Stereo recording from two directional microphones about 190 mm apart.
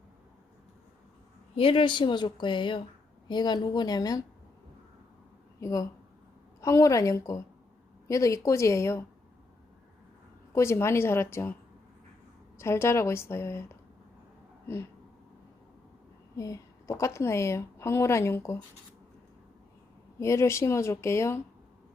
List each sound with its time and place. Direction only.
1.5 s a woman's voice: 25° left (ahead or behind)
5.5 s speech: 20° left (ahead or behind)
10.5 s speech: 15° left (ahead or behind)
12.5 s speech: 15° left (ahead or behind)
16.3 s a woman's voice: 15° left (ahead or behind)
20.1 s speech: 15° left (ahead or behind)